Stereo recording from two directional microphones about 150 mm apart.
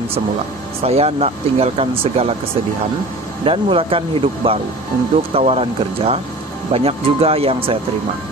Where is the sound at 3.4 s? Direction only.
40° right (ahead or behind).